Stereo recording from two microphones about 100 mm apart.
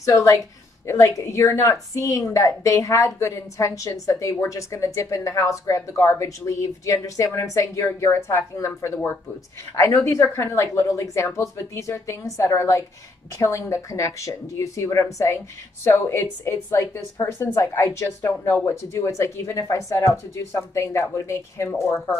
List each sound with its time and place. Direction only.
0.0 s a woman's voice: 35° left (ahead or behind)